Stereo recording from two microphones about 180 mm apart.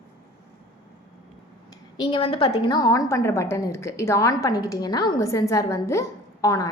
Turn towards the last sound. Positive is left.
turn(degrees=20)  # may be behind; listen again after turning